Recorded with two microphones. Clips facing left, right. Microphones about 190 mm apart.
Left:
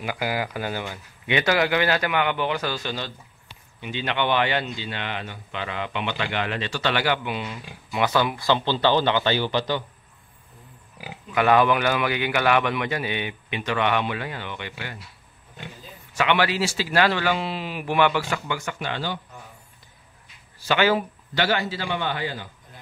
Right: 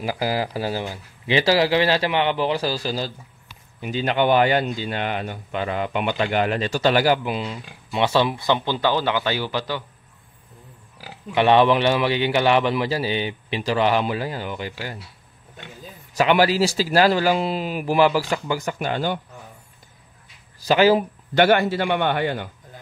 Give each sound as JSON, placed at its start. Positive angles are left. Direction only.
{"t": 0.0, "sound": "speech", "side_deg": -35}
{"t": 11.3, "sound": "speech", "side_deg": -30}
{"t": 16.1, "sound": "speech", "side_deg": -40}
{"t": 20.6, "sound": "speech", "side_deg": -35}
{"t": 21.4, "sound": "a man's voice", "side_deg": -55}